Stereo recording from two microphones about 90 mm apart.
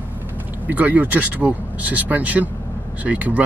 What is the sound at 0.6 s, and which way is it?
Speech, 20° right (ahead or behind).